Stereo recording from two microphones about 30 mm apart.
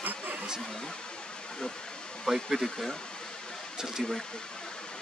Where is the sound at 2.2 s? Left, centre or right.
Centre.